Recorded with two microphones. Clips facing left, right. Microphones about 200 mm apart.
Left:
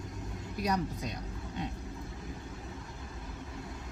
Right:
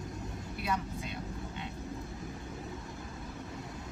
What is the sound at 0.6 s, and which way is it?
Speech, 40° left (ahead or behind).